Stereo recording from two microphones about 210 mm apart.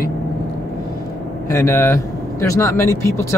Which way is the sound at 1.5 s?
15° left (ahead or behind).